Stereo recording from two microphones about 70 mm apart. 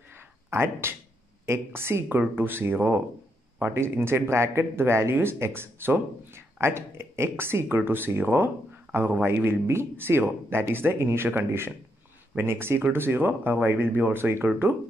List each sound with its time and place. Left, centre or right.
0.5 s speech: right